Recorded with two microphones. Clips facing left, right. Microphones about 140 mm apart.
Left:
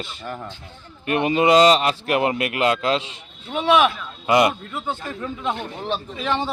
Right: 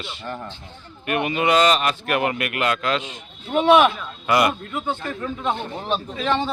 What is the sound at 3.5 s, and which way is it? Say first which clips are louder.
Speech: right 3 dB; centre (ahead or behind).